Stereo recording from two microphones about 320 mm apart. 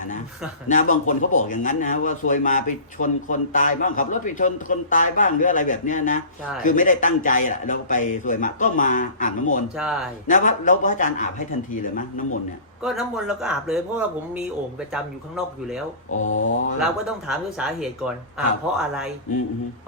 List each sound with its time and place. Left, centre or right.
0.7 s speech: left
9.7 s speech: centre
10.2 s speech: left
12.8 s speech: centre
16.1 s mantra: left
17.1 s speech: centre